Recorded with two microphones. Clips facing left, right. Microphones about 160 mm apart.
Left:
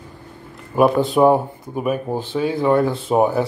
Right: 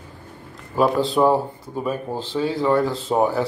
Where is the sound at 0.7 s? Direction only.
15° left (ahead or behind).